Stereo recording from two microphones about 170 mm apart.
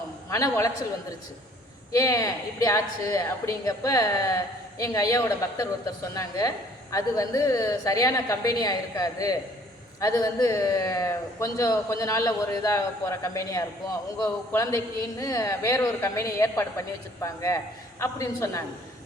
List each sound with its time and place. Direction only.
0.3 s a woman's voice: 20° left (ahead or behind)
1.9 s a woman's voice: 20° left (ahead or behind)